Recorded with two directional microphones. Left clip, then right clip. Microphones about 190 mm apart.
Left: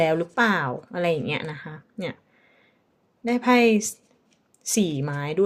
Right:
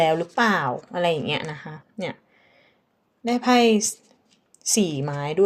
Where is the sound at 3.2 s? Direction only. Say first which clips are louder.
Right 1 dB; 35° left (ahead or behind).